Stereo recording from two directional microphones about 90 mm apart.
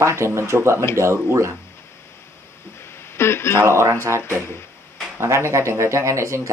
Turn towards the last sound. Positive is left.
turn(degrees=-30)  # may be behind; listen again after turning